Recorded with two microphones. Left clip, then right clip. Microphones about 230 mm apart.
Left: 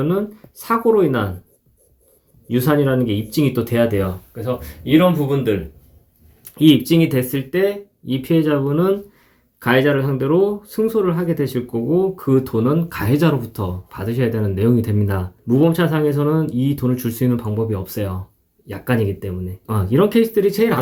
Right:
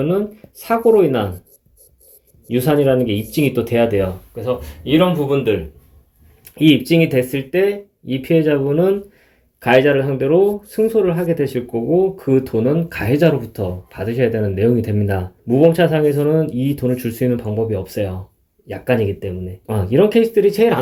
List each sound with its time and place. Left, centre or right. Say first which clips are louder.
0.0 s speech: right 2 dB; centre
2.5 s speech: right 3 dB; centre
6.6 s speech: right 1 dB; centre